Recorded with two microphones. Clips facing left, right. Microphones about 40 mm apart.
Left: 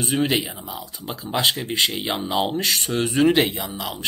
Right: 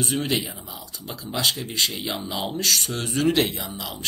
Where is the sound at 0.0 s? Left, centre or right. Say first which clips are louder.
Left 3 dB; centre.